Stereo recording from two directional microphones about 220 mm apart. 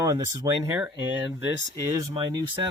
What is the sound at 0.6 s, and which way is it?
Speech, 10° right (ahead or behind).